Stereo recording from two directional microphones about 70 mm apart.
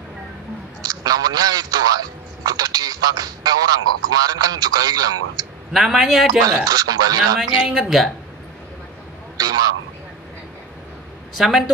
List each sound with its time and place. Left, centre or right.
0.8 s speech: right
5.7 s speech: centre
6.4 s speech: right
7.3 s speech: centre
9.4 s speech: right
11.3 s speech: centre